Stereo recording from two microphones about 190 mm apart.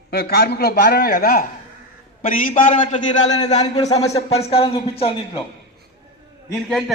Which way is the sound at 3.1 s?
20° left (ahead or behind).